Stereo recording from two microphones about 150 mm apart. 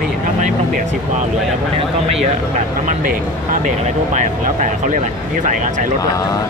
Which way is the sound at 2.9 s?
65° right (ahead or behind).